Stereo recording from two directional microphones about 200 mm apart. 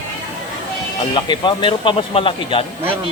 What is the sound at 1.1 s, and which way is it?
Speech, 25° left (ahead or behind).